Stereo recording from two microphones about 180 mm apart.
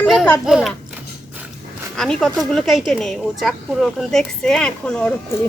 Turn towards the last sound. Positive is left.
turn(degrees=5)  # may be behind; listen again after turning